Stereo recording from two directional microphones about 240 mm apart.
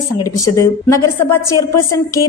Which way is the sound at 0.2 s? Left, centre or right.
Centre.